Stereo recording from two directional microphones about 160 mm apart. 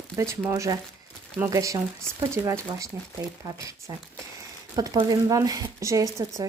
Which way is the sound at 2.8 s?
20° right (ahead or behind).